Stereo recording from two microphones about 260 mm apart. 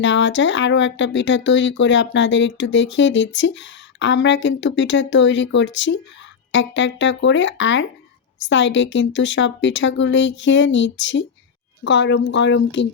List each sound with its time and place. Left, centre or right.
0.0 s speech: left